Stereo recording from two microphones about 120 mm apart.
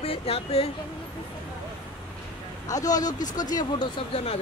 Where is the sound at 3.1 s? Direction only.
90° left.